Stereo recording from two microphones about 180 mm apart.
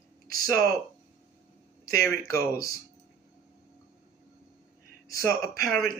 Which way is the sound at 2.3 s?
20° left (ahead or behind).